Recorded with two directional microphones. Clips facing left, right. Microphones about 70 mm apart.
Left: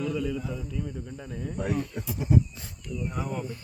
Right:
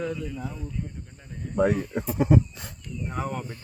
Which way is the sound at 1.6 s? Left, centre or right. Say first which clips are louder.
Right 10 dB; right.